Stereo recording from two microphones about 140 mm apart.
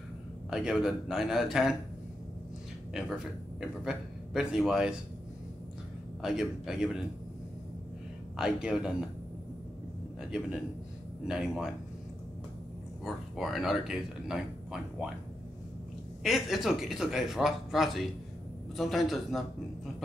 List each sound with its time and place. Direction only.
0.5 s speech: 5° right (ahead or behind)
2.9 s speech: 5° right (ahead or behind)
6.2 s speech: 5° right (ahead or behind)
8.4 s speech: 5° right (ahead or behind)
11.2 s speech: 5° right (ahead or behind)
13.0 s speech: centre (ahead or behind)
16.2 s speech: centre (ahead or behind)